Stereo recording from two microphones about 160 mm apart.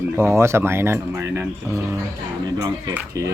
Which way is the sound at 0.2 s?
15° right (ahead or behind).